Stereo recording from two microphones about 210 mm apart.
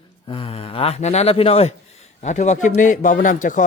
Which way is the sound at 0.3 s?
25° left (ahead or behind).